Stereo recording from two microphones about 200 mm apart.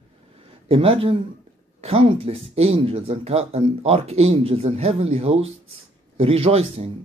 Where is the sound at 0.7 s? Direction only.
30° right (ahead or behind).